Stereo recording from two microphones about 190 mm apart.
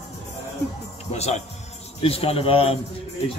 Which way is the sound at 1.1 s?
35° left (ahead or behind).